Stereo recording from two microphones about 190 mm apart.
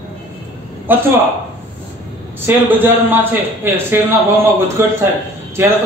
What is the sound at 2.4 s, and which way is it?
A man's voice, 10° right (ahead or behind).